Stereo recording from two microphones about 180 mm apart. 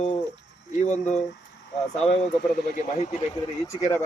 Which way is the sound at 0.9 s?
40° left (ahead or behind).